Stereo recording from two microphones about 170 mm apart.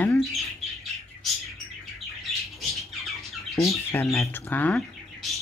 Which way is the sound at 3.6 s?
15° left (ahead or behind).